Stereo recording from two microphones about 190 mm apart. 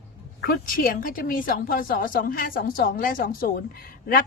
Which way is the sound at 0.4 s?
50° left (ahead or behind).